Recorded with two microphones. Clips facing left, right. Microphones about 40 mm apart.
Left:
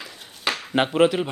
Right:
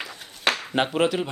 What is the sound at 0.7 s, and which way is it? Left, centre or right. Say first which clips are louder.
Speech: left 6 dB; centre.